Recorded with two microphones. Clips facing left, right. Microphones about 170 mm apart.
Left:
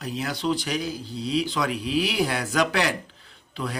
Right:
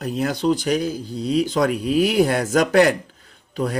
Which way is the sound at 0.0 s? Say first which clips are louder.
Right 7 dB; 50° right (ahead or behind).